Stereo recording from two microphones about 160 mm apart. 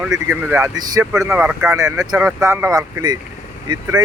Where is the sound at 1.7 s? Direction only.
20° right (ahead or behind).